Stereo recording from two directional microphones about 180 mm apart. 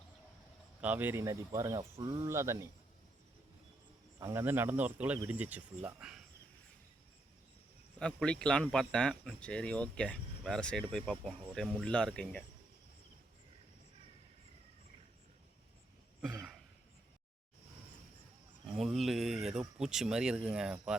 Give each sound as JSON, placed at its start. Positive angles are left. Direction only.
{"t": 0.8, "sound": "speech", "side_deg": -10}
{"t": 4.2, "sound": "speech", "side_deg": -15}
{"t": 7.9, "sound": "speech", "side_deg": 5}
{"t": 16.2, "sound": "a sound", "side_deg": 0}
{"t": 18.6, "sound": "speech", "side_deg": 0}